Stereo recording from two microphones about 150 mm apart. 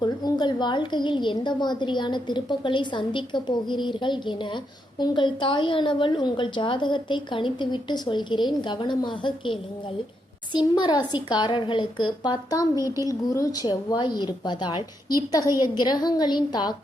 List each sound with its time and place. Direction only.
0.0 s a woman's voice: 30° left (ahead or behind)